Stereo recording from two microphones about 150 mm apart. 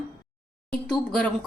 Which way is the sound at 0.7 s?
5° left (ahead or behind).